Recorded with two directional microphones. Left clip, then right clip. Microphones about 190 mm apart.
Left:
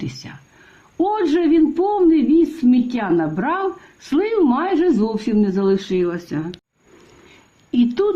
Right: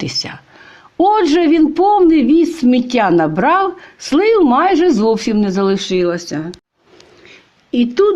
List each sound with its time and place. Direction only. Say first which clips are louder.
0.0 s a woman's voice: right 11 dB; 40° right (ahead or behind)
7.7 s speech: right 5 dB; 5° right (ahead or behind)